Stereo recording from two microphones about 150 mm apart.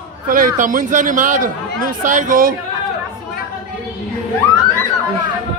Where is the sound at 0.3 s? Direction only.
65° right (ahead or behind).